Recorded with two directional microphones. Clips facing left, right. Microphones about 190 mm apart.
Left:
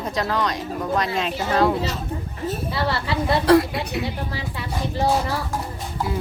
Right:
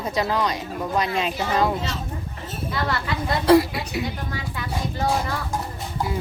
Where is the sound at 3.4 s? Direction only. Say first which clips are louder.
Right 1 dB; centre (ahead or behind).